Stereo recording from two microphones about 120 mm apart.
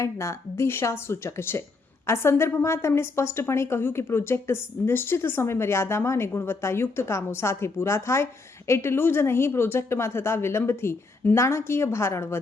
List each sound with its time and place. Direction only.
0.0 s a woman's voice: 25° left (ahead or behind)